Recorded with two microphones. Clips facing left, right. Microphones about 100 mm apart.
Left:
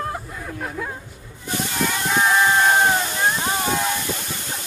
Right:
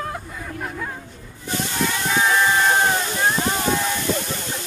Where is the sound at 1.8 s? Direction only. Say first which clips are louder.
Left 1 dB; centre (ahead or behind).